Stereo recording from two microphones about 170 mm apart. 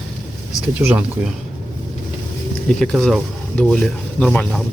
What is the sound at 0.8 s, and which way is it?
Speech, 10° right (ahead or behind).